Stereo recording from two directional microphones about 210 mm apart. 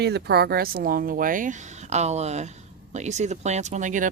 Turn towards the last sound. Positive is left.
turn(degrees=-35)  # may be behind; listen again after turning